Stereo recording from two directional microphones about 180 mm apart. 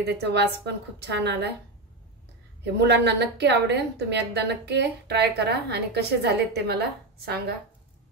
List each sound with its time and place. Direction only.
0.0 s a woman's voice: 70° right (ahead or behind)
2.6 s a woman's voice: 70° right (ahead or behind)